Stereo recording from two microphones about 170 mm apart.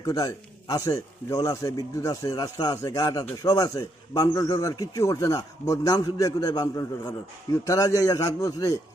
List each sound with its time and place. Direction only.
0.0 s a man's voice: 20° left (ahead or behind)